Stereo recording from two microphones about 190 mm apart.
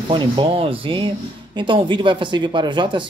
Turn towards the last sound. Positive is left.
turn(degrees=-25)  # may be behind; listen again after turning